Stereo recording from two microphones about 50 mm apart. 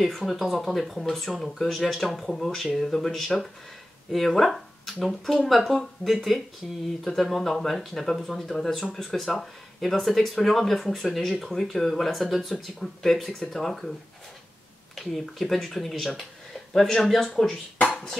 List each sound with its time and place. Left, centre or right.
0.0 s speech: centre
7.2 s speech: centre
15.1 s speech: centre